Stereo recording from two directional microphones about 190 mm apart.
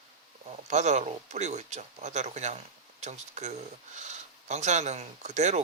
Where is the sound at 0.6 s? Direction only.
40° right (ahead or behind).